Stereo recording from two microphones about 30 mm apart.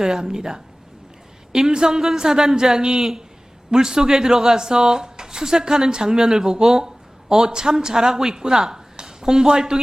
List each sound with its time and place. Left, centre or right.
0.0 s a woman's voice: centre